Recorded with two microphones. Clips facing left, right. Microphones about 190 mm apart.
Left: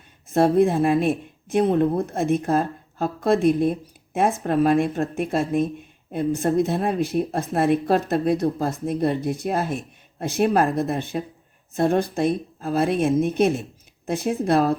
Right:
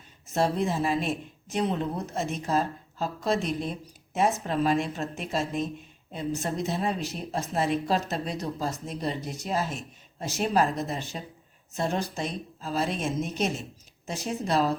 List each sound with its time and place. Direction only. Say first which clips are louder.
0.3 s a woman's voice: left 9 dB; 55° left (ahead or behind)